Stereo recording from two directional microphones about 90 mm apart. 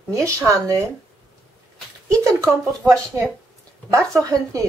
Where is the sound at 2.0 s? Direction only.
35° right (ahead or behind).